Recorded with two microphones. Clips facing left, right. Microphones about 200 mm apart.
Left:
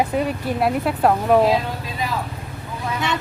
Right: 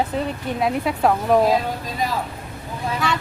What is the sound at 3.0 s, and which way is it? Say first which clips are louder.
Vehicle: even; 20° left (ahead or behind).